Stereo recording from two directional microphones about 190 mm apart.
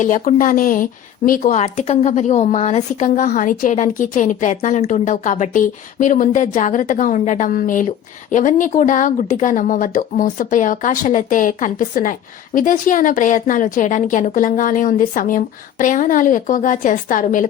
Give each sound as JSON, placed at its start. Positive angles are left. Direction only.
{"t": 0.0, "sound": "speech", "side_deg": 45}